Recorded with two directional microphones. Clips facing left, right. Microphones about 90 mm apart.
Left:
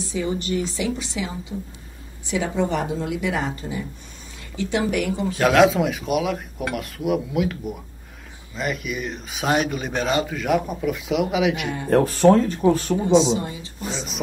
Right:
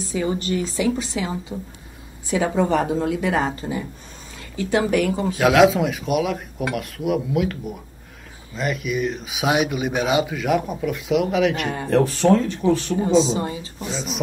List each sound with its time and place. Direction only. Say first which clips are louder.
0.1 s a woman's voice: right 2 dB; 45° right (ahead or behind)
4.6 s a woman's voice: right 3 dB; 40° right (ahead or behind)
5.3 s speech: right 1 dB; centre (ahead or behind)
11.9 s speech: left 2 dB; 45° left (ahead or behind)
13.1 s a woman's voice: left 1 dB; 40° right (ahead or behind)
13.8 s speech: right 2 dB; centre (ahead or behind)